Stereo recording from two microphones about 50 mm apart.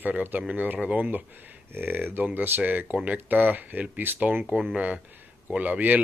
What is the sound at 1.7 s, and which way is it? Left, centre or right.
Speech, right.